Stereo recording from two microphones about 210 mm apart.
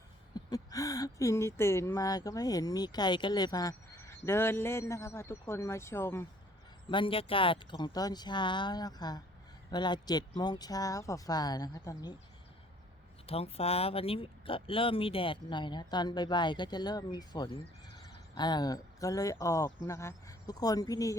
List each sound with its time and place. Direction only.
0.3 s speech: 15° left (ahead or behind)
6.9 s speech: 25° left (ahead or behind)
13.2 s speech: 30° left (ahead or behind)